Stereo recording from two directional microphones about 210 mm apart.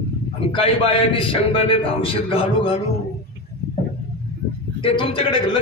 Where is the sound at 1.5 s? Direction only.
25° left (ahead or behind).